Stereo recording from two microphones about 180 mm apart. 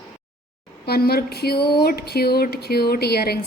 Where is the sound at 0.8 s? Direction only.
60° left (ahead or behind).